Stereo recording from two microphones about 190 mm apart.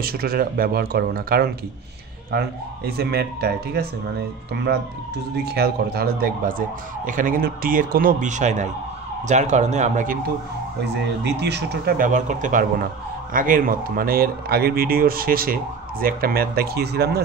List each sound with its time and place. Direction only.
0.0 s speech: 55° right (ahead or behind)
11.2 s speech: 60° right (ahead or behind)